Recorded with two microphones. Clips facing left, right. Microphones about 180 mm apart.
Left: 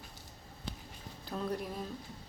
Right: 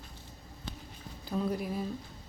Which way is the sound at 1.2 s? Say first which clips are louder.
Right 4 dB; 5° right (ahead or behind).